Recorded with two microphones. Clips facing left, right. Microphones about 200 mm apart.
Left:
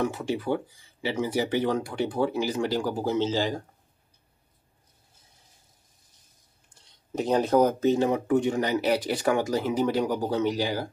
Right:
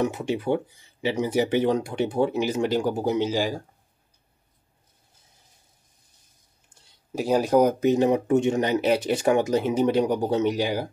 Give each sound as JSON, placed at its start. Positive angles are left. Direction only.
{"t": 0.0, "sound": "speech", "side_deg": -20}
{"t": 6.8, "sound": "speech", "side_deg": -5}